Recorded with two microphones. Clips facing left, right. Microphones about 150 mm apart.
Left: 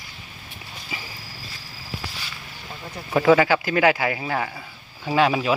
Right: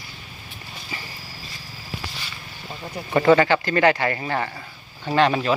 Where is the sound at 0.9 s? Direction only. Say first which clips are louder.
Even; 5° left (ahead or behind).